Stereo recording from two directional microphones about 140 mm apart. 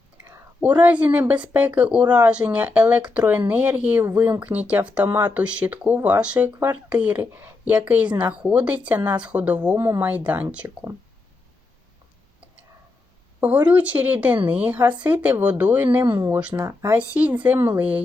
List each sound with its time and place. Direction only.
0.3 s speech: 10° right (ahead or behind)
13.4 s speech: 10° right (ahead or behind)
16.6 s speech: 20° right (ahead or behind)